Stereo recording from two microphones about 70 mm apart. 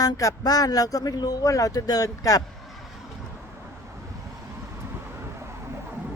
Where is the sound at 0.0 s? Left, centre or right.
Left.